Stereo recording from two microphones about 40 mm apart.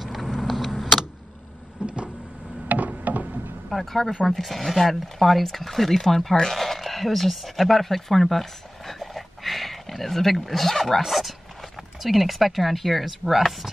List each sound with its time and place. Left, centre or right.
0.0 s vehicle: centre
1.8 s vehicle: right
2.7 s a sound: right
3.7 s speech: centre